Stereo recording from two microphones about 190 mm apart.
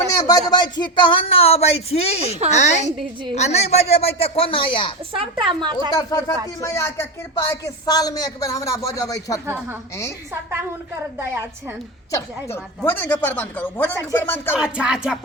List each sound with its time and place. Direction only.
0.1 s a woman's voice: 20° left (ahead or behind)
5.1 s a woman's voice: 25° right (ahead or behind)
6.0 s speech: 20° left (ahead or behind)
11.2 s a woman's voice: 15° right (ahead or behind)
12.1 s speech: 15° left (ahead or behind)
14.5 s music: 5° right (ahead or behind)